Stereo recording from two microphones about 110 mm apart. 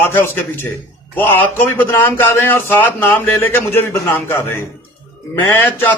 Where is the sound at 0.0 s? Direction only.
20° left (ahead or behind).